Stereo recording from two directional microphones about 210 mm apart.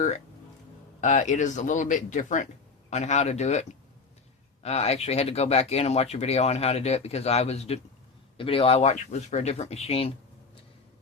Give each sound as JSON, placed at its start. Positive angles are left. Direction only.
{"t": 1.0, "sound": "speech", "side_deg": 35}